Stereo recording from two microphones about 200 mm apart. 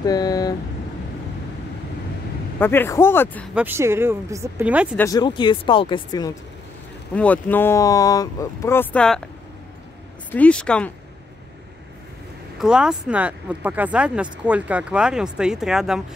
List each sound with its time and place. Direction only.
0.0 s speech: 20° left (ahead or behind)
2.6 s speech: 10° left (ahead or behind)
3.5 s speech: 10° right (ahead or behind)
4.9 s speech: 15° left (ahead or behind)
7.2 s speech: 10° left (ahead or behind)
10.3 s speech: 5° left (ahead or behind)
12.5 s speech: 5° right (ahead or behind)